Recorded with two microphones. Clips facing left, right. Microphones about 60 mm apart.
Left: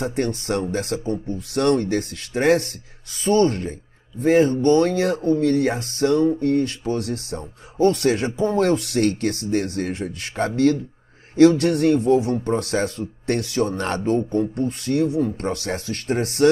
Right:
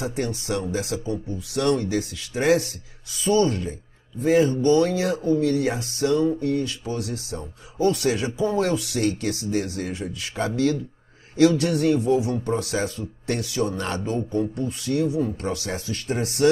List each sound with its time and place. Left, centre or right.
0.0 s speech: left